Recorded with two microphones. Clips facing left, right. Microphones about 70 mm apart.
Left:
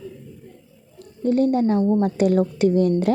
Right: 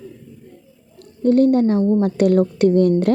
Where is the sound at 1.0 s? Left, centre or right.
Right.